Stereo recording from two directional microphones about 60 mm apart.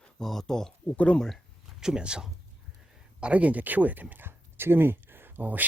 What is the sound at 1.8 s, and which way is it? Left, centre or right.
Speech, centre.